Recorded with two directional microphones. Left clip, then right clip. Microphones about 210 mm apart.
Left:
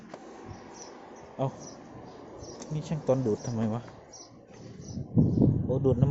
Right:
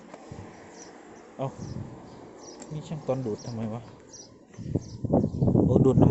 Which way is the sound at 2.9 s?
15° left (ahead or behind).